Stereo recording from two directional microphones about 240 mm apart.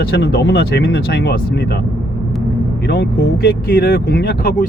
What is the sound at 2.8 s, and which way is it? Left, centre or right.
Speech, left.